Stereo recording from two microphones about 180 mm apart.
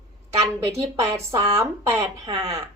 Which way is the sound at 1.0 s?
15° right (ahead or behind).